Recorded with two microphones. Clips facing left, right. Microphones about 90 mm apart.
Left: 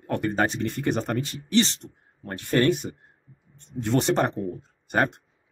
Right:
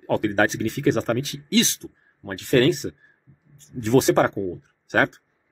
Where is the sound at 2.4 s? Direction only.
80° right.